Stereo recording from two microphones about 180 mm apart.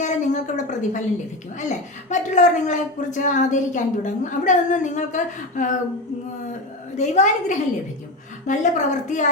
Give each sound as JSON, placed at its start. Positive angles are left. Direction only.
{"t": 0.0, "sound": "a sound", "side_deg": 40}
{"t": 2.0, "sound": "a woman's voice", "side_deg": 40}
{"t": 6.9, "sound": "a woman's voice", "side_deg": 40}